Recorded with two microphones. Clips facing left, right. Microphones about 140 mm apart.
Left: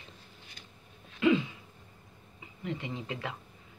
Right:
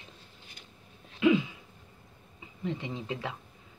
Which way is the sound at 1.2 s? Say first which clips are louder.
Right 1 dB; 10° right (ahead or behind).